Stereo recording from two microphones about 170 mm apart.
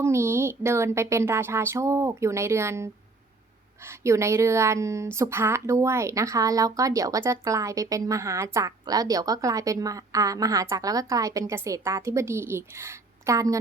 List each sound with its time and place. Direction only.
0.0 s speech: 15° right (ahead or behind)